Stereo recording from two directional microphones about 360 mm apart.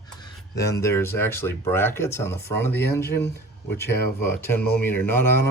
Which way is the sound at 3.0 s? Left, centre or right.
Left.